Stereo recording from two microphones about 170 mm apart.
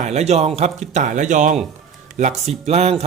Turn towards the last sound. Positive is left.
turn(degrees=-40)  # may be behind; listen again after turning